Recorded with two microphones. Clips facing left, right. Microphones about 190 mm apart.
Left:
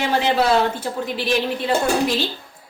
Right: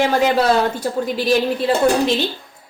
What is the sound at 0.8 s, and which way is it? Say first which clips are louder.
Speech: right 4 dB; 40° right (ahead or behind).